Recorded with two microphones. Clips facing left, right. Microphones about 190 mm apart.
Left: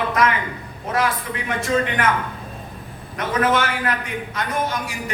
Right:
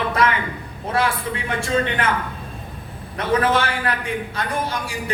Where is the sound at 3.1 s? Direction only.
30° right (ahead or behind).